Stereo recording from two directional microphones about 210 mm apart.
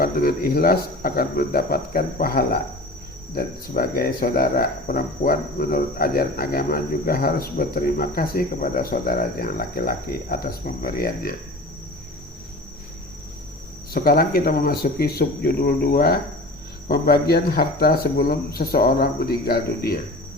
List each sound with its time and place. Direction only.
0.0 s speech: 45° left (ahead or behind)
13.9 s speech: 45° left (ahead or behind)